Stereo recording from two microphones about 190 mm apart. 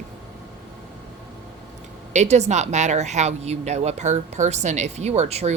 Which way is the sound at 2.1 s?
35° right (ahead or behind).